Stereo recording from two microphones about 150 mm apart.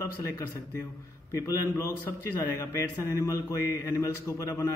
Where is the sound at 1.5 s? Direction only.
15° left (ahead or behind).